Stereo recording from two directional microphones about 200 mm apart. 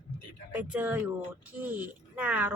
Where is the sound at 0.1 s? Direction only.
30° left (ahead or behind).